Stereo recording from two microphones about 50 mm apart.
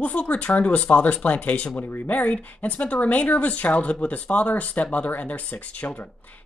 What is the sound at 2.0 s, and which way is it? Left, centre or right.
Speech, left.